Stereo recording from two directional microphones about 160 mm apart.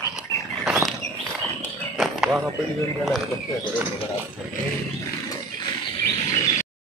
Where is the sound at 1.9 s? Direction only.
Centre (ahead or behind).